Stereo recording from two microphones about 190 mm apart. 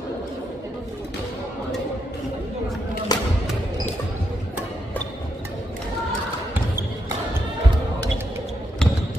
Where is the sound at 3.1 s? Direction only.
20° left (ahead or behind).